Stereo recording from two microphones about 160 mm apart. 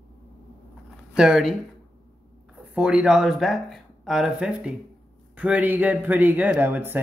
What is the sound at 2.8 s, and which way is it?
Speech, 5° right (ahead or behind).